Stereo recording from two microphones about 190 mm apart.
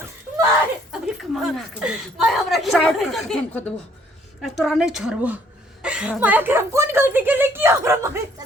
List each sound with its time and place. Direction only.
1.0 s a woman's voice: centre (ahead or behind)